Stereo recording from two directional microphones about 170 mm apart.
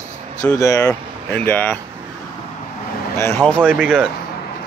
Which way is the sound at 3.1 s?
15° left (ahead or behind).